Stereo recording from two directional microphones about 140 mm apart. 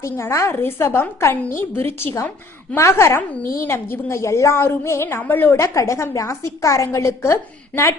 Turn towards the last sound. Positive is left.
turn(degrees=20)  # may be behind; listen again after turning